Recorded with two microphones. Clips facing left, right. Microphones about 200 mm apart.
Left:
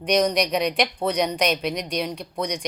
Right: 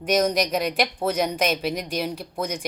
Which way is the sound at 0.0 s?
Centre (ahead or behind).